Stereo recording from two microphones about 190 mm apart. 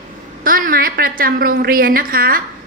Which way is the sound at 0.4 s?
50° right (ahead or behind).